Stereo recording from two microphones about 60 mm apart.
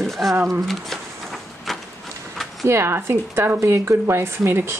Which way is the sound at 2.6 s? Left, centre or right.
Right.